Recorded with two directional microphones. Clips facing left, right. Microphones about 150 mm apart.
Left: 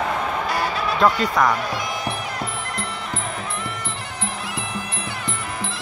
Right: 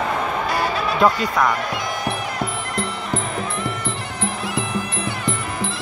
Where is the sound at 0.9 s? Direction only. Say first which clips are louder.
Even; 5° right (ahead or behind).